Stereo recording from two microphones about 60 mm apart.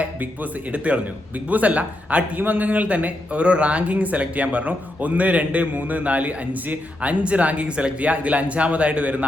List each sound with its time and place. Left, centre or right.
1.5 s a man's voice: right